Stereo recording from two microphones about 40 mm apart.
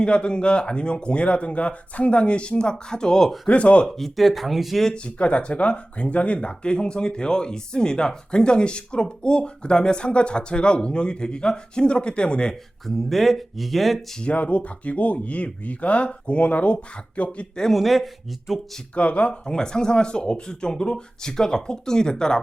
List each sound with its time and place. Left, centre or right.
0.0 s speech: left
3.4 s speech: left
3.8 s speech: centre
5.0 s speech: left
12.8 s speech: centre
14.2 s speech: left
17.7 s speech: centre
18.9 s speech: left
19.5 s speech: centre